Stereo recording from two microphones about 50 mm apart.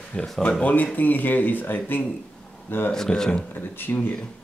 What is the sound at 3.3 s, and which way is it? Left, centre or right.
Speech, left.